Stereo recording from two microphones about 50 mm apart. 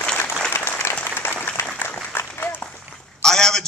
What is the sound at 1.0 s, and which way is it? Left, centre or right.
Applause, left.